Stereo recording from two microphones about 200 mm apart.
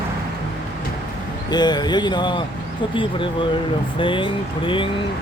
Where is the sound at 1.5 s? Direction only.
20° left (ahead or behind).